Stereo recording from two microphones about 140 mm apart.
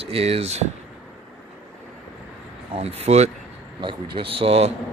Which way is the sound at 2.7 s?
50° right (ahead or behind).